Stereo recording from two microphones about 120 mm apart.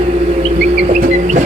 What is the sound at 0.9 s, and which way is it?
Music, 85° right.